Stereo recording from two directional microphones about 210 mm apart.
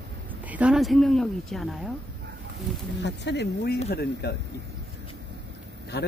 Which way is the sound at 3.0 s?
55° left (ahead or behind).